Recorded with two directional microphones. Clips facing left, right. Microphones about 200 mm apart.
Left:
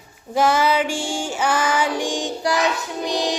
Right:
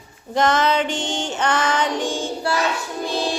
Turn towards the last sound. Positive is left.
turn(degrees=15)  # may be behind; listen again after turning